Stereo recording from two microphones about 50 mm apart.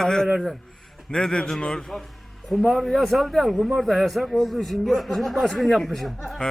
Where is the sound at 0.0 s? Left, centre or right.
Centre.